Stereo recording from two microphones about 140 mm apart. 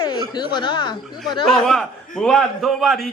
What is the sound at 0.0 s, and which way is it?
Speech, 30° left (ahead or behind).